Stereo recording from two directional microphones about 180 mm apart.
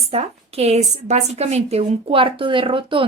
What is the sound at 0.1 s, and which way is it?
A woman's voice, 35° right (ahead or behind).